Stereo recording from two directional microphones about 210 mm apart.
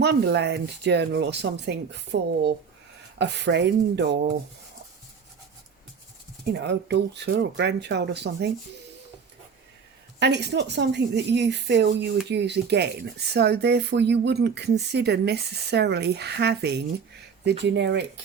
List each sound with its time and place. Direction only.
0.0 s speech: 55° right (ahead or behind)
3.2 s speech: 55° right (ahead or behind)
6.5 s speech: 50° right (ahead or behind)
10.2 s speech: 55° right (ahead or behind)